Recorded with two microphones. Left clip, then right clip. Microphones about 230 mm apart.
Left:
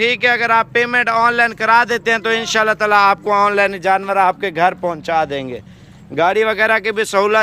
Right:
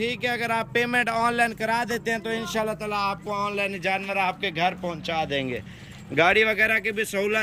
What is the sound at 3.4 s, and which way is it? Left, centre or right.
Speech, left.